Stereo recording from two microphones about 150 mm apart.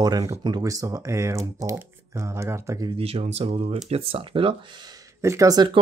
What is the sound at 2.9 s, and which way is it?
Speech, 40° right (ahead or behind).